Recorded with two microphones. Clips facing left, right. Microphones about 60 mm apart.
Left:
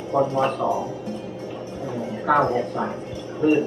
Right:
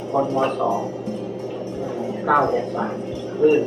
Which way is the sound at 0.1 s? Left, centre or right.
Left.